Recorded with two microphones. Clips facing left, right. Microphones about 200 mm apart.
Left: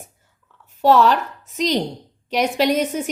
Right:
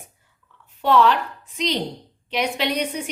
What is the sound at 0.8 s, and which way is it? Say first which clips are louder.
A woman's voice: left 3 dB; 40° left (ahead or behind).